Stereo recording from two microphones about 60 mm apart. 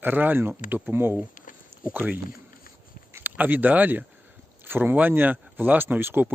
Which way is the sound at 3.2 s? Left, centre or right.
Right.